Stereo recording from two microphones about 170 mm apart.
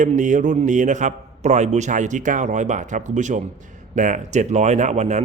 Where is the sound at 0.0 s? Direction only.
50° right (ahead or behind).